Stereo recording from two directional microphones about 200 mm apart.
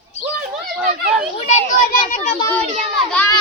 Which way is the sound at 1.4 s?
35° left (ahead or behind).